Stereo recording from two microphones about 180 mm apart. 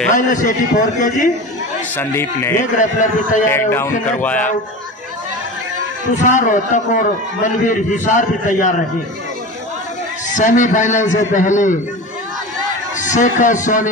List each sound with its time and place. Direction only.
0.1 s a man's voice: 45° left (ahead or behind)
2.0 s speech: 15° left (ahead or behind)
2.8 s a man's voice: 45° left (ahead or behind)
3.4 s speech: 15° left (ahead or behind)
6.2 s a man's voice: 45° left (ahead or behind)
10.3 s a man's voice: 45° left (ahead or behind)
13.0 s a man's voice: 45° left (ahead or behind)